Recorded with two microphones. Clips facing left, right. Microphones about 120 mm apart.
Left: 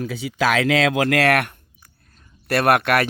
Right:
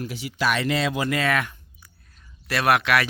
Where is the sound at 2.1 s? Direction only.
50° left (ahead or behind).